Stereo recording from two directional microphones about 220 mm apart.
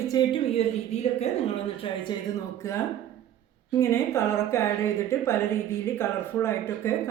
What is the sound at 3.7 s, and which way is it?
Speech, 10° left (ahead or behind).